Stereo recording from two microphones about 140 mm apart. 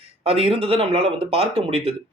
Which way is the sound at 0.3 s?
45° right (ahead or behind).